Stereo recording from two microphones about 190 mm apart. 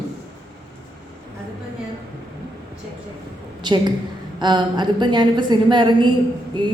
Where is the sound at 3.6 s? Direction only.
25° right (ahead or behind).